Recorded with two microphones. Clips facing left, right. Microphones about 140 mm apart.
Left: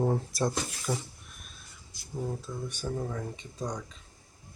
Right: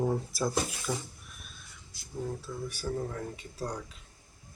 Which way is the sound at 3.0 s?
5° left (ahead or behind).